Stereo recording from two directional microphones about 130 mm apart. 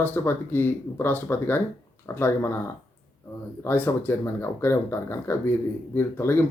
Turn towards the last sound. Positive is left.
turn(degrees=15)  # may be behind; listen again after turning